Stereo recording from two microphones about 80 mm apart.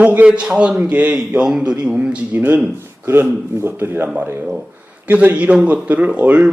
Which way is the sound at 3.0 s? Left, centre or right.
Right.